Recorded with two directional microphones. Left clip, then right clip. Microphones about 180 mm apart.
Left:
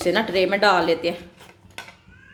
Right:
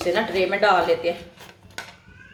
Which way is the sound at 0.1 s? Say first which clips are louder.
Left 2 dB; 60° left (ahead or behind).